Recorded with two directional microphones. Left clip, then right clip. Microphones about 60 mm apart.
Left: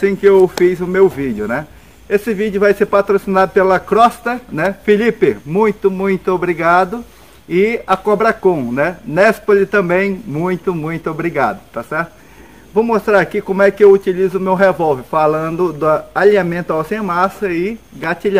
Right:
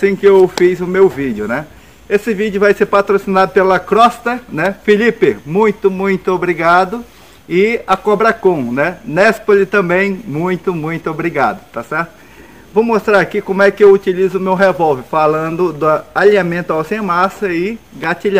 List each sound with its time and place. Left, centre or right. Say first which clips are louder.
0.0 s speech: right 1 dB; left
0.6 s speech: right 1 dB; centre
2.8 s speech: right 1 dB; centre